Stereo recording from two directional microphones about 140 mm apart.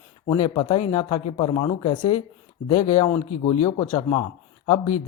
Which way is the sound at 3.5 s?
45° left (ahead or behind).